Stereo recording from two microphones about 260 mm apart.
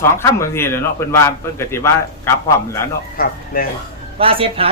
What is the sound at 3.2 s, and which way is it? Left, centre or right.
Speech, left.